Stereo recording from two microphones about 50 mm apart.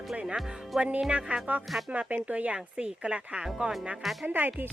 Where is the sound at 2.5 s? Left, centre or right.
Centre.